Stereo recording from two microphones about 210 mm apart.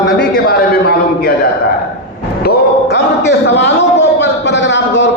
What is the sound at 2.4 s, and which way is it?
A man's voice, 50° left (ahead or behind).